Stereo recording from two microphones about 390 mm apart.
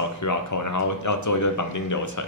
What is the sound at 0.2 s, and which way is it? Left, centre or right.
Speech, left.